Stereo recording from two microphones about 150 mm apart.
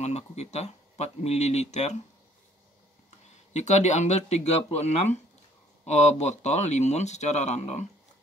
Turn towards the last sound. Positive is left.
turn(degrees=50)  # may be behind; listen again after turning